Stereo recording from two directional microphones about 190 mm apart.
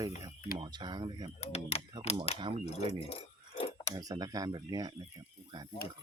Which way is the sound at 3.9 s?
20° right (ahead or behind).